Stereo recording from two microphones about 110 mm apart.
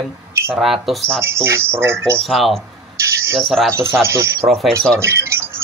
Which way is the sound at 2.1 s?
Centre (ahead or behind).